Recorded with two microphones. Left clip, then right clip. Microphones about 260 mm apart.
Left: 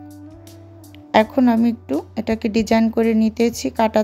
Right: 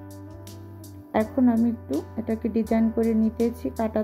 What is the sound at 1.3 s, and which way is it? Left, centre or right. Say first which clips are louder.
Speech: left 6 dB; left.